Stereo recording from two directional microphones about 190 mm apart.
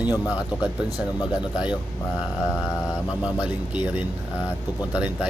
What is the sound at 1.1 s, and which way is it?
Speech, 20° left (ahead or behind).